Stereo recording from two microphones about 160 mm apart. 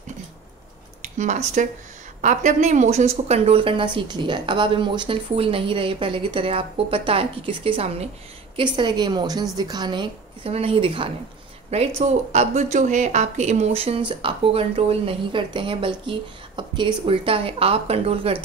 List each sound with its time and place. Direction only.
1.1 s a woman's voice: 50° right (ahead or behind)